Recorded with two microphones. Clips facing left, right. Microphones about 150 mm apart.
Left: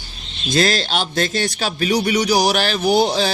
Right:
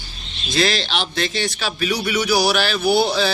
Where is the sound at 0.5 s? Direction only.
45° left (ahead or behind).